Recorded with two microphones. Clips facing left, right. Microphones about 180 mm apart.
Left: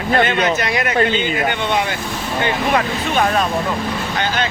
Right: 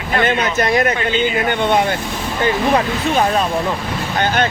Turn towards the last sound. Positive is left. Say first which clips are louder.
# right 2 dB
turn(degrees=-35)  # may be behind; listen again after turning